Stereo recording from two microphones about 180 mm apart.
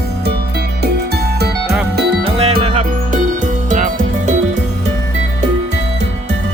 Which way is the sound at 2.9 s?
45° right (ahead or behind).